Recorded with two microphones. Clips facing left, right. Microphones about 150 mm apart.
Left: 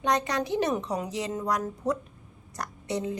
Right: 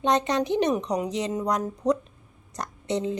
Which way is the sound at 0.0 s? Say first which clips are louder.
Right 4 dB; 20° right (ahead or behind).